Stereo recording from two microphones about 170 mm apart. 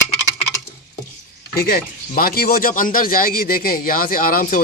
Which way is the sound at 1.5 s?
60° left (ahead or behind).